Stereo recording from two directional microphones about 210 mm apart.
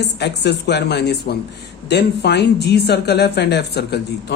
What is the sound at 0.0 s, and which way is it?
A woman's voice, 55° left (ahead or behind).